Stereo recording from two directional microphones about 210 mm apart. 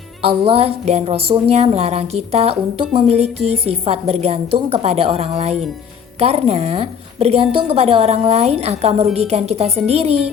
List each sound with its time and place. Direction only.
0.2 s a woman's voice: 25° right (ahead or behind)